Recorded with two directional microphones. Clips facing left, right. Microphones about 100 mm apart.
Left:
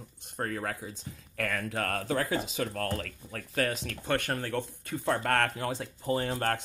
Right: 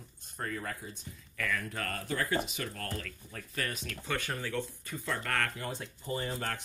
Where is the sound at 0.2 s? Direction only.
70° left (ahead or behind).